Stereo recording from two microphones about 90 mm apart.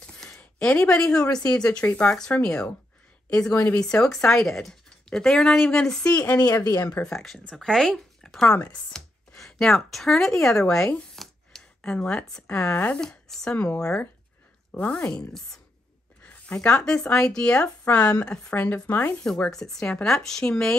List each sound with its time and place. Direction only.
0.0 s speech: 10° left (ahead or behind)
6.3 s speech: 40° left (ahead or behind)
6.9 s speech: 10° left (ahead or behind)
19.2 s speech: 10° left (ahead or behind)